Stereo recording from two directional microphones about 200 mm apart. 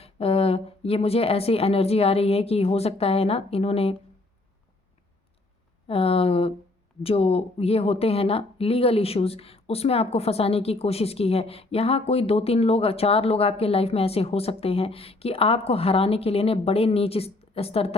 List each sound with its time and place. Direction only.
0.0 s speech: 30° left (ahead or behind)
5.9 s speech: 30° left (ahead or behind)